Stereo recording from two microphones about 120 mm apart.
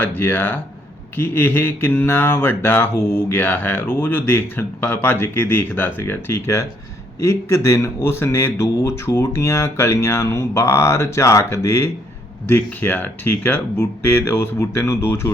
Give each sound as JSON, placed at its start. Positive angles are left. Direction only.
{"t": 0.0, "sound": "speech", "side_deg": 15}